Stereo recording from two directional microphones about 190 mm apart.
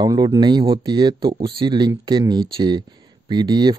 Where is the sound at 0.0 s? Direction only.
20° right (ahead or behind).